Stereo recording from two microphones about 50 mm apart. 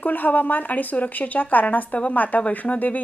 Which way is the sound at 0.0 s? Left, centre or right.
Left.